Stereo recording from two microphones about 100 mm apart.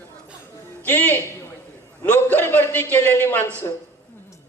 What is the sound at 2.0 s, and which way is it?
A man's voice, 20° left (ahead or behind).